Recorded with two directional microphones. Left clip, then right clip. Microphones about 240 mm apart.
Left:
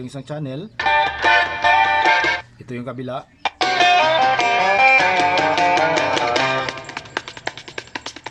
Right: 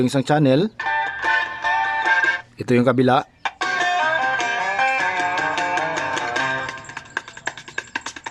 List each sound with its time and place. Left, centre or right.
0.0 s speech: right
0.8 s music: centre
2.6 s speech: right
3.4 s music: centre